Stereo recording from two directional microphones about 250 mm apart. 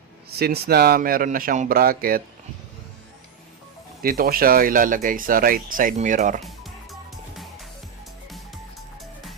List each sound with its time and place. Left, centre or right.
0.3 s speech: right
4.0 s speech: right